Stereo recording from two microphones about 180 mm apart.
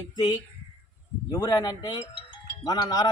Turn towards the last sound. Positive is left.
turn(degrees=25)  # may be behind; listen again after turning